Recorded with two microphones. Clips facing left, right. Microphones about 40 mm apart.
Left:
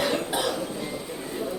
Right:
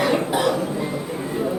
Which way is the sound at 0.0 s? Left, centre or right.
Right.